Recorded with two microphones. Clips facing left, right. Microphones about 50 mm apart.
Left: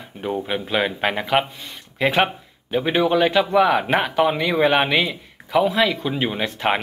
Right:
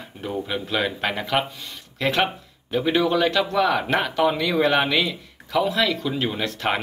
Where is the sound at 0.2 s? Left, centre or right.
Left.